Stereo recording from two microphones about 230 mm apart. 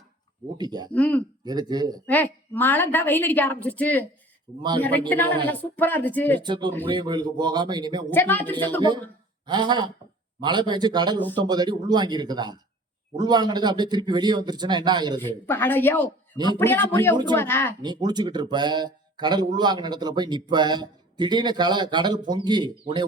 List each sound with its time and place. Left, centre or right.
0.5 s speech: centre
0.9 s a woman's voice: centre
1.5 s speech: centre
2.0 s a woman's voice: centre
6.4 s speech: right
8.1 s a woman's voice: centre
9.5 s speech: centre
15.2 s a woman's voice: centre
17.8 s speech: centre